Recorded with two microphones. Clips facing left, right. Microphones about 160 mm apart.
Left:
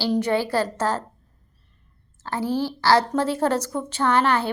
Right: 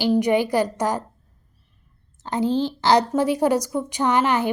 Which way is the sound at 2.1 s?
20° right (ahead or behind).